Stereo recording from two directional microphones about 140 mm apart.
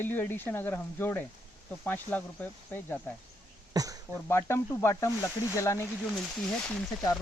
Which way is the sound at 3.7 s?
25° right (ahead or behind).